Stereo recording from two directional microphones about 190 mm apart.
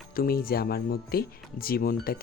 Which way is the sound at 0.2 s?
50° left (ahead or behind).